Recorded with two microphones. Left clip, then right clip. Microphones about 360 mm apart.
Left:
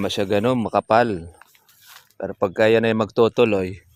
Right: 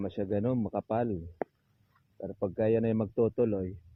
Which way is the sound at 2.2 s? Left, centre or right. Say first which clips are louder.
Left 12 dB; centre.